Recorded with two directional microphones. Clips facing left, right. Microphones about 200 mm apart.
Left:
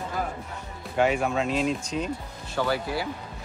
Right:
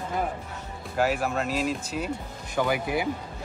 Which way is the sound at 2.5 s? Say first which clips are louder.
Right 1 dB; 15° right (ahead or behind).